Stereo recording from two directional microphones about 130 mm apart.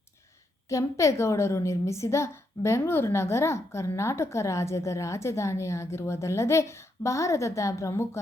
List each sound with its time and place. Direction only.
0.7 s a woman's voice: 25° left (ahead or behind)